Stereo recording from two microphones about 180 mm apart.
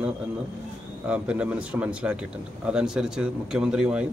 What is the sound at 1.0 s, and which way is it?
A man's voice, 5° right (ahead or behind).